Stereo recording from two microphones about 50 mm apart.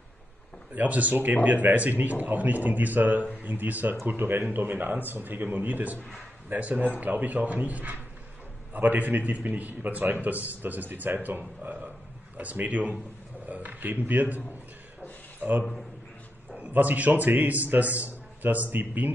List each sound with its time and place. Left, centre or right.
0.7 s speech: right
15.4 s a man's voice: right